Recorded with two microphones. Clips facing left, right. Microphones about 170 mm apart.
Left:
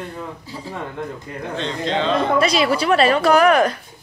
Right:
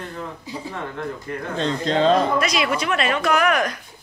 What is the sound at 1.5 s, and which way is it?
Speech, 40° right (ahead or behind).